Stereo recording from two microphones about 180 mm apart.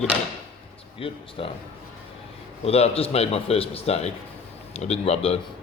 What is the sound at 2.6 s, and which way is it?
A man's voice, 35° left (ahead or behind).